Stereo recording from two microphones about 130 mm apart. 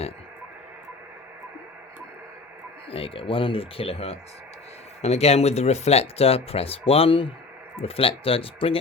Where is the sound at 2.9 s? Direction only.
45° left (ahead or behind).